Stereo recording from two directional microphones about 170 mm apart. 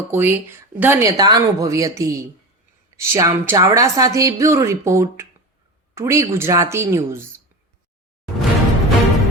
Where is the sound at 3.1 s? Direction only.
15° right (ahead or behind).